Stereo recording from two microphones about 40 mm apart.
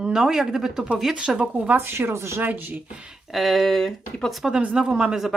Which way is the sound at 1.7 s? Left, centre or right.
Right.